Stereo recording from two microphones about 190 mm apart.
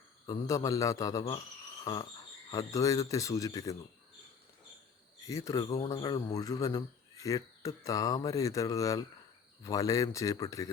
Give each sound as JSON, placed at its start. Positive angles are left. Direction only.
{"t": 0.3, "sound": "speech", "side_deg": 20}
{"t": 1.8, "sound": "a sound", "side_deg": 20}
{"t": 2.5, "sound": "speech", "side_deg": 20}
{"t": 5.2, "sound": "speech", "side_deg": 15}